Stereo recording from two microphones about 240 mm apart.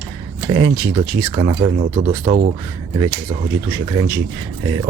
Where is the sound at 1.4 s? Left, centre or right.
Right.